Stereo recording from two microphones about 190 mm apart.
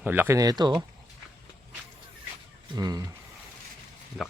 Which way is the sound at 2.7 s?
20° right (ahead or behind).